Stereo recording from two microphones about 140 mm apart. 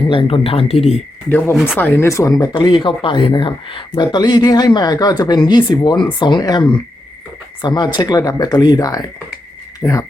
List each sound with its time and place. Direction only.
0.1 s speech: 40° left (ahead or behind)
1.3 s speech: 15° left (ahead or behind)